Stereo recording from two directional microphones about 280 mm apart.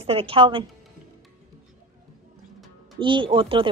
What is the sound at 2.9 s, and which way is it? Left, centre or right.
Speech, centre.